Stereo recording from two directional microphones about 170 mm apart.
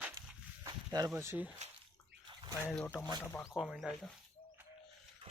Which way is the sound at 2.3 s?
25° right (ahead or behind).